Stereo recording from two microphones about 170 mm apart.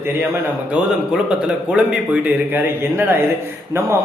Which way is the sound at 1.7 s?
10° right (ahead or behind).